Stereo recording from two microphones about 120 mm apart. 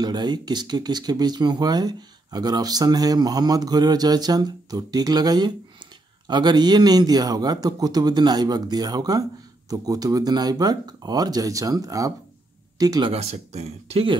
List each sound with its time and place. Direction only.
0.0 s speech: 35° right (ahead or behind)
13.0 s speech: 60° right (ahead or behind)